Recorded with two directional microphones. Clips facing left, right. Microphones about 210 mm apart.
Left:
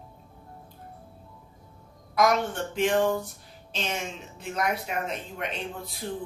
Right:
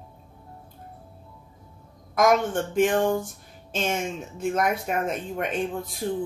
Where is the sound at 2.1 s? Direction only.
50° right (ahead or behind).